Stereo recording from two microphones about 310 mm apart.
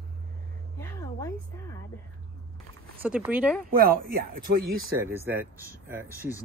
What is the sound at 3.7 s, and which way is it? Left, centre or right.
Speech, right.